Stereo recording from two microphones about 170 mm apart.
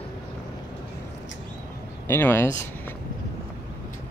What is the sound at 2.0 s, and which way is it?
Speech, 15° left (ahead or behind).